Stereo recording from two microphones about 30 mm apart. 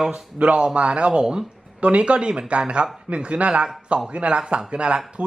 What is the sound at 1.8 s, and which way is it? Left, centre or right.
Speech, right.